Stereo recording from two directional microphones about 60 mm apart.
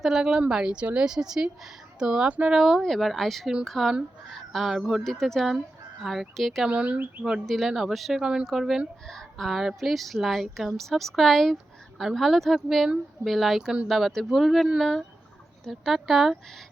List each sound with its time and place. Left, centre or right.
0.0 s a woman's voice: centre
0.3 s a woman's voice: centre
6.7 s speech: centre
7.4 s a woman's voice: centre
8.2 s a woman's voice: centre